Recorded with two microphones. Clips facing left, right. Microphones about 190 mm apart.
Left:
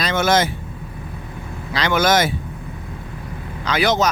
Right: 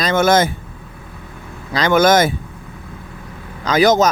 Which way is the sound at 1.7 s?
45° right (ahead or behind).